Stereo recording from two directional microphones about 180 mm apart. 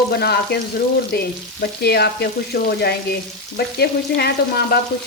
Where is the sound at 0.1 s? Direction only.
60° left (ahead or behind).